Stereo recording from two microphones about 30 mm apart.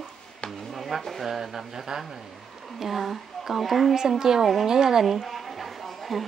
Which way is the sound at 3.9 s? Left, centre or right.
Centre.